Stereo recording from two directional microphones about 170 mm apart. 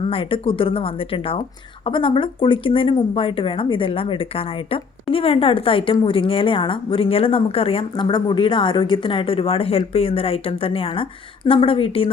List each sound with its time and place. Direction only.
0.1 s speech: 30° left (ahead or behind)